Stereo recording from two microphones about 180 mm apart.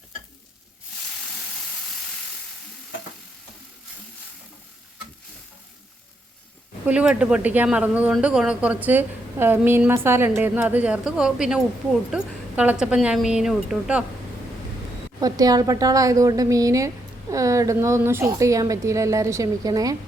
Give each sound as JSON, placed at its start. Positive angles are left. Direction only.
{"t": 6.8, "sound": "a woman's voice", "side_deg": -5}
{"t": 15.2, "sound": "speech", "side_deg": -20}